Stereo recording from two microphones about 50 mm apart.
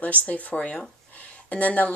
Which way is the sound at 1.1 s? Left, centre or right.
Left.